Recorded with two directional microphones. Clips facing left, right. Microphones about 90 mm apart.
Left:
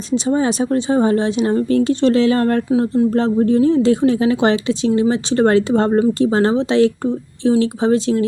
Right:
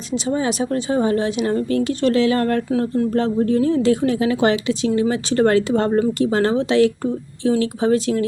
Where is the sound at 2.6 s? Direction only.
15° left (ahead or behind).